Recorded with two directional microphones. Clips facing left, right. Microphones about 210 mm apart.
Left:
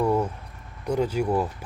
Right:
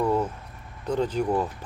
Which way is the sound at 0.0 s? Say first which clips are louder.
Left 1 dB; 10° left (ahead or behind).